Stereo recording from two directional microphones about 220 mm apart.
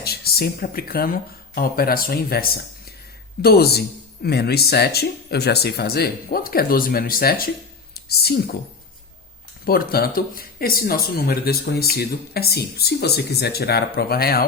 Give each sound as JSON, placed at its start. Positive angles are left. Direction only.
{"t": 0.0, "sound": "speech", "side_deg": 45}
{"t": 9.6, "sound": "speech", "side_deg": 45}